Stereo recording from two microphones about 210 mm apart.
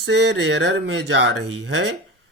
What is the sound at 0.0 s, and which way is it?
Speech, 60° right (ahead or behind).